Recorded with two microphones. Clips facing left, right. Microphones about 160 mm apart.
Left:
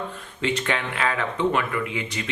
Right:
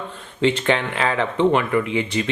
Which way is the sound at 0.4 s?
30° right (ahead or behind).